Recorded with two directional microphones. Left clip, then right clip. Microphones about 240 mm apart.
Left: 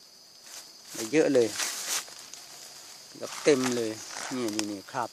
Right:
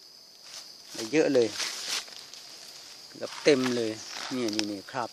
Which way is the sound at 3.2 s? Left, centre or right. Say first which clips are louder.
Right 1 dB; centre.